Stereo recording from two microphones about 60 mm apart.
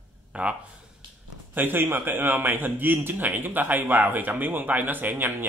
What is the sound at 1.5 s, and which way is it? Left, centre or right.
A man's voice, right.